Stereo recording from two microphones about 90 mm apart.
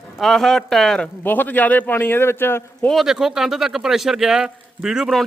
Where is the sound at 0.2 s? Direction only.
5° left (ahead or behind).